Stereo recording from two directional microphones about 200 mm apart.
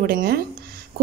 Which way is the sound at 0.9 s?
45° right (ahead or behind).